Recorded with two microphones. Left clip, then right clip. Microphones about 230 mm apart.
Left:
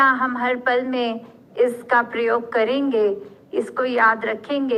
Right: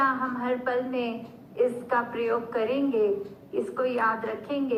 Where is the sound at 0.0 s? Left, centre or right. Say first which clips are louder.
Left 8 dB; left.